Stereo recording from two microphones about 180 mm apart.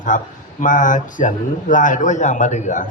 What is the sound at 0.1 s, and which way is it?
A man's voice, 45° left (ahead or behind).